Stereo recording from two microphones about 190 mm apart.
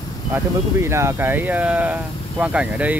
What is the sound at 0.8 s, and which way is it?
Speech, 15° right (ahead or behind).